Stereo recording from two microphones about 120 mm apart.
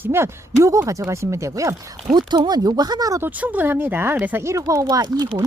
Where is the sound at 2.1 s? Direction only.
40° right (ahead or behind).